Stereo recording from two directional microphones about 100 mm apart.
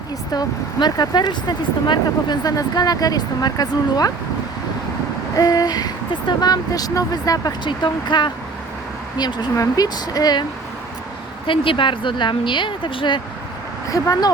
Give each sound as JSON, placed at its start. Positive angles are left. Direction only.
{"t": 0.3, "sound": "speech", "side_deg": 40}
{"t": 5.4, "sound": "speech", "side_deg": 40}
{"t": 7.7, "sound": "speech", "side_deg": 50}
{"t": 11.4, "sound": "speech", "side_deg": 60}
{"t": 13.9, "sound": "speech", "side_deg": 40}